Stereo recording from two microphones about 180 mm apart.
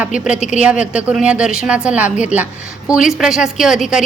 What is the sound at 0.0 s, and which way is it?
A woman's voice, 5° right (ahead or behind).